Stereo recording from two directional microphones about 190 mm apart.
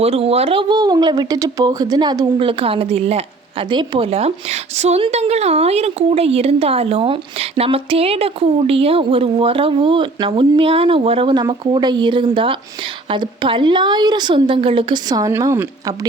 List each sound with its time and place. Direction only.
0.0 s speech: 30° right (ahead or behind); by 16.0 s 15° right (ahead or behind)